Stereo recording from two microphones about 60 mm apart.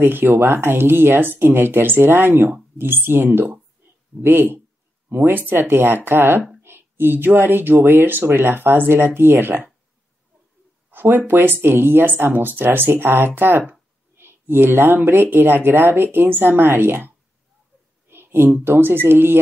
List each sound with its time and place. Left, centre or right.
0.0 s speech: right
3.3 s speech: right
4.2 s speech: right
10.9 s speech: right
18.1 s a woman's voice: right